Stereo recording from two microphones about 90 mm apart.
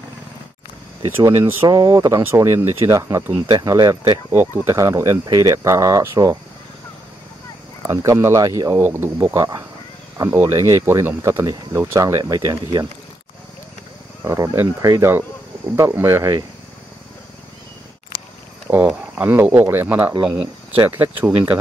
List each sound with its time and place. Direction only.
1.1 s speech: 35° right (ahead or behind)
4.3 s speech: 30° right (ahead or behind)
5.2 s speech: 45° right (ahead or behind)
7.8 s speech: 35° right (ahead or behind)
8.8 s speech: 25° right (ahead or behind)
9.2 s speech: 40° right (ahead or behind)
14.2 s speech: 35° right (ahead or behind)
18.7 s speech: 25° right (ahead or behind)